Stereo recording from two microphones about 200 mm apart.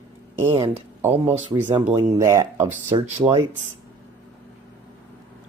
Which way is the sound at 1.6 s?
10° right (ahead or behind).